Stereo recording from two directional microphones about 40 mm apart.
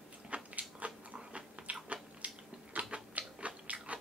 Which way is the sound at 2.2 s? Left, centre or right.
Right.